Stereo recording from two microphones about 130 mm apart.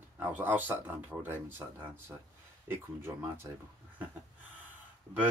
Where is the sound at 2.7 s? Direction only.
20° right (ahead or behind).